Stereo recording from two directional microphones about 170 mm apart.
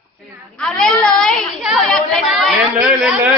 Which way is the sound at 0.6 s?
5° left (ahead or behind).